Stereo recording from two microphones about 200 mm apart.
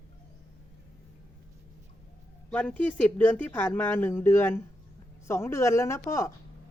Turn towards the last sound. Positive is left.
turn(degrees=15)  # may be behind; listen again after turning